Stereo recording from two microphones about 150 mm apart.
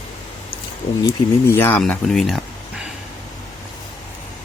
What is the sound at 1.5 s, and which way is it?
Speech, 15° left (ahead or behind).